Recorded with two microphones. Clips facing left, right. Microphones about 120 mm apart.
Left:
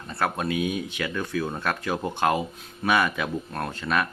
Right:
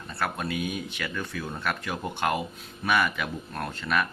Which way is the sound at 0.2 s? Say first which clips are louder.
Left 4 dB; 20° left (ahead or behind).